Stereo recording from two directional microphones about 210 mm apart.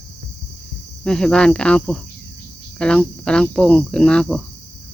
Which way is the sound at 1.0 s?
5° left (ahead or behind).